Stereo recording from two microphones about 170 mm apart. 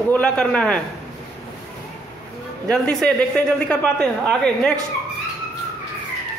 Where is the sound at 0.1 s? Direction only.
5° left (ahead or behind).